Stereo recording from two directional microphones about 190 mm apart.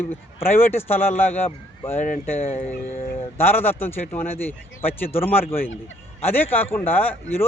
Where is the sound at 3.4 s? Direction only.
10° left (ahead or behind).